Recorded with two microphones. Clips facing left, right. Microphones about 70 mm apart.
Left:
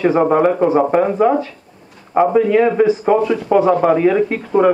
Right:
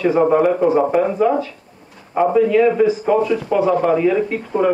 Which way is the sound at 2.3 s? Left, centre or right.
Left.